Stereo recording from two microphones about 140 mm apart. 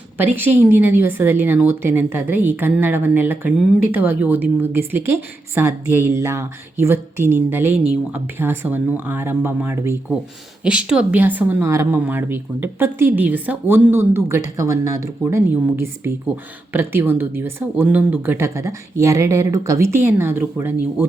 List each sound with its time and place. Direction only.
0.2 s speech: 15° right (ahead or behind)
10.6 s speech: 5° right (ahead or behind)